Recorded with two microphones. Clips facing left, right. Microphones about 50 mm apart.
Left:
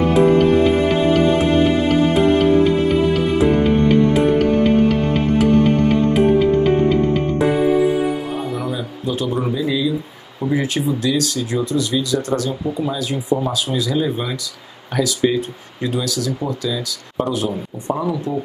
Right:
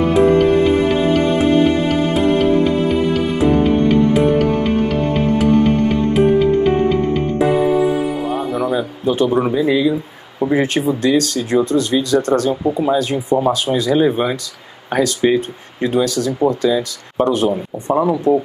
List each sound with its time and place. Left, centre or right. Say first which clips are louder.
0.1 s music: right 1 dB; centre
8.7 s a sound: right 7 dB; right
9.3 s speech: right 5 dB; right
12.6 s speech: right 6 dB; right